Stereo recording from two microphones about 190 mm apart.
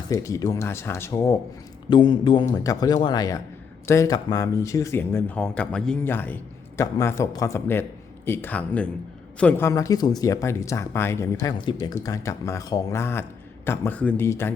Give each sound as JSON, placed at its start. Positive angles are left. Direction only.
{"t": 0.1, "sound": "a man's voice", "side_deg": 15}